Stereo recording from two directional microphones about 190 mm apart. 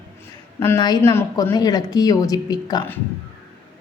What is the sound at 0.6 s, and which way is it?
Speech, 15° left (ahead or behind).